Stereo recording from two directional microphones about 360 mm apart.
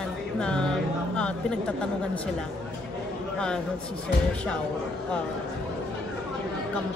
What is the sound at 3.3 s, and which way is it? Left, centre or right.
Speech, centre.